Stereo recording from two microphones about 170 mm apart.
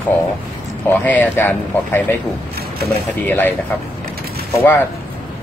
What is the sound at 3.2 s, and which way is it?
Speech, 10° left (ahead or behind).